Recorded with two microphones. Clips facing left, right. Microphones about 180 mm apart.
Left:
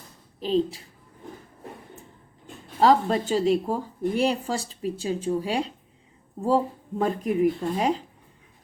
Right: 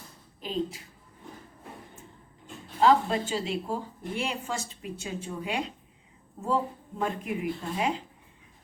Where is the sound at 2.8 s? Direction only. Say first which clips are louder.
Left 3 dB; 40° left (ahead or behind).